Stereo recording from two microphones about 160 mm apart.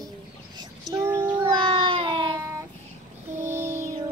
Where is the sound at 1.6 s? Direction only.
30° right (ahead or behind).